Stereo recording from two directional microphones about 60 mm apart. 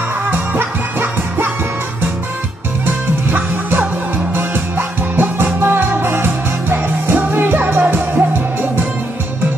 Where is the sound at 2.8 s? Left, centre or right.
Right.